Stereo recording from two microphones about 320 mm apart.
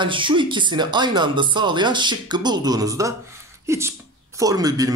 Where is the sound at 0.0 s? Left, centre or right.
Centre.